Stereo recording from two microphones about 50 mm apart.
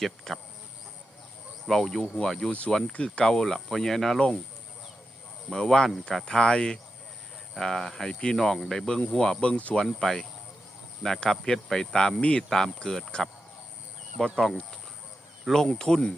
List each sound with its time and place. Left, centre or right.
0.3 s speech: centre
1.6 s speech: centre
2.5 s speech: left
5.5 s speech: centre
12.5 s speech: centre
14.3 s speech: centre